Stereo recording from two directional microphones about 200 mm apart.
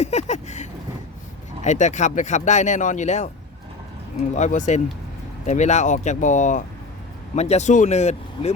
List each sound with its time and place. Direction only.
0.0 s vehicle: 35° left (ahead or behind)
1.6 s speech: 35° left (ahead or behind)
4.4 s speech: 35° left (ahead or behind)